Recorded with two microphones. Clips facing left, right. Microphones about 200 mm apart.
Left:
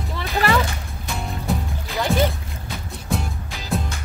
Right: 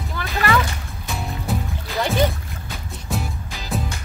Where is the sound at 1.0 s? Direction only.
Centre (ahead or behind).